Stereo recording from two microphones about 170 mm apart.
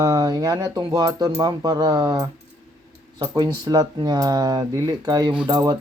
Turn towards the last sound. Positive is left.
turn(degrees=-25)  # may be behind; listen again after turning